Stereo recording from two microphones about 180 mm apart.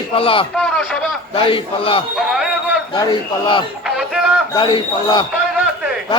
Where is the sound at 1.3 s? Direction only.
30° left (ahead or behind).